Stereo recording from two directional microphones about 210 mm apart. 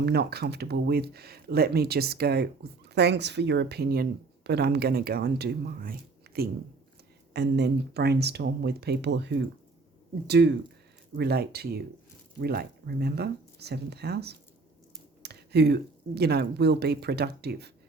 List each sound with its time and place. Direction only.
0.0 s speech: 50° right (ahead or behind)